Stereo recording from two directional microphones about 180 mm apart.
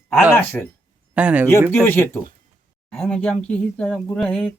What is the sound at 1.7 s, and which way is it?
Speech, 10° left (ahead or behind).